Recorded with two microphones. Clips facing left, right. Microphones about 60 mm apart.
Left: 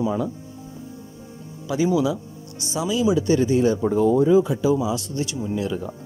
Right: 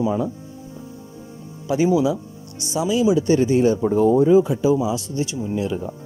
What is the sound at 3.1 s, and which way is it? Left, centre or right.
Speech, right.